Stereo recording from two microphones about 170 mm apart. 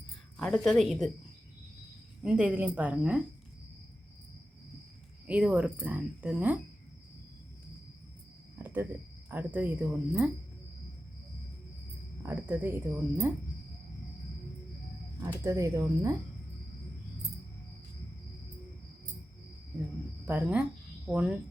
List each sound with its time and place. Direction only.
0.3 s speech: 5° left (ahead or behind)
2.2 s speech: 5° right (ahead or behind)
5.2 s speech: 10° right (ahead or behind)
8.5 s cricket: 10° right (ahead or behind)
9.3 s speech: 10° right (ahead or behind)
12.2 s speech: 10° right (ahead or behind)
15.2 s speech: 20° right (ahead or behind)
20.2 s speech: 10° right (ahead or behind)